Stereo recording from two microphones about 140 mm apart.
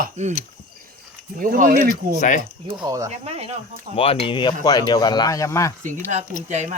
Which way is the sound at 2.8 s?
25° right (ahead or behind).